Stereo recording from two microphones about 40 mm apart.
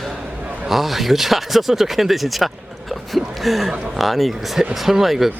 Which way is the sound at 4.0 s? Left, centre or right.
Centre.